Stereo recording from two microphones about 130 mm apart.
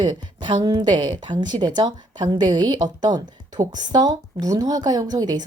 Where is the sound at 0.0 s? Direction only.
35° right (ahead or behind).